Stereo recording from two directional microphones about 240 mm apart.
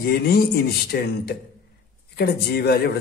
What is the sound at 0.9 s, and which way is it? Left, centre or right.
Speech, left.